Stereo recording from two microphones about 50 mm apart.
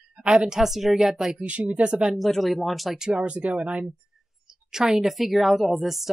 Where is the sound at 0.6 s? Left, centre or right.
Centre.